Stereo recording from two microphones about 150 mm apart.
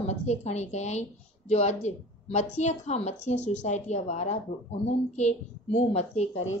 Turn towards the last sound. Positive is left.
turn(degrees=45)  # may be behind; listen again after turning